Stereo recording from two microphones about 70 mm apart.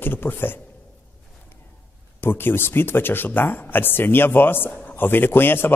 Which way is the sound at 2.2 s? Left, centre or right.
Left.